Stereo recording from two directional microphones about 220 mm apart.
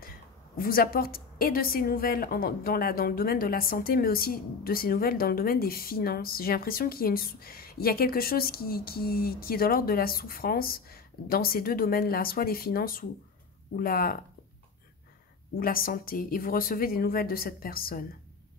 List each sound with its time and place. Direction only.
0.6 s a woman's voice: 40° left (ahead or behind)
15.5 s a woman's voice: 40° left (ahead or behind)